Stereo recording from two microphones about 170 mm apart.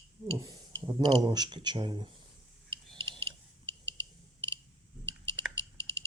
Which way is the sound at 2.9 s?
30° right (ahead or behind).